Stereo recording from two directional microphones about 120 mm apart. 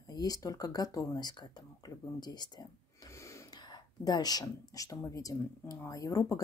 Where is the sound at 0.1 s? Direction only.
30° left (ahead or behind).